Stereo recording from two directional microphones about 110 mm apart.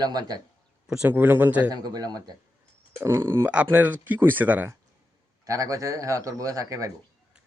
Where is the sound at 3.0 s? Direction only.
25° right (ahead or behind).